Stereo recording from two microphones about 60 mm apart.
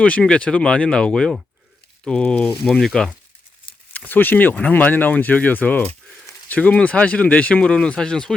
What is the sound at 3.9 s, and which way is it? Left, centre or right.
Speech, left.